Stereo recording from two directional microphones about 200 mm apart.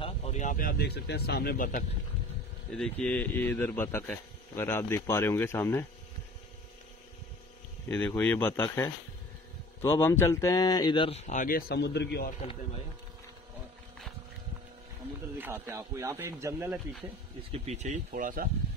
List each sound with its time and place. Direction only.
0.0 s speech: 35° left (ahead or behind)
2.7 s speech: 5° left (ahead or behind)
7.9 s speech: 10° left (ahead or behind); by 12.4 s 50° left (ahead or behind)
15.3 s speech: 10° right (ahead or behind)
17.5 s speech: 35° right (ahead or behind)